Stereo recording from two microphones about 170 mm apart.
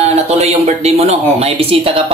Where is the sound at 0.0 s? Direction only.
40° right (ahead or behind).